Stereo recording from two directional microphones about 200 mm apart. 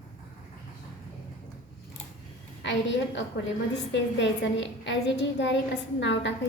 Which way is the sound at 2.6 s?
60° left (ahead or behind).